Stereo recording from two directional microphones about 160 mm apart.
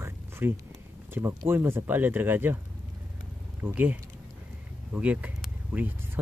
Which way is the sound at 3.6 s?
10° right (ahead or behind).